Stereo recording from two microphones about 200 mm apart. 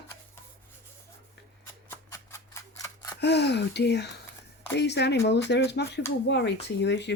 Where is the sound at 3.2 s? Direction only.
55° left (ahead or behind).